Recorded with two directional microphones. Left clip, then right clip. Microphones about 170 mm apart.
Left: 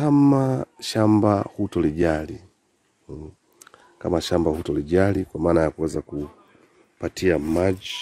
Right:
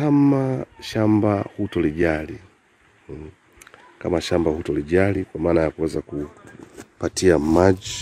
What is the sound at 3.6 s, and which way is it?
Speech, 15° left (ahead or behind).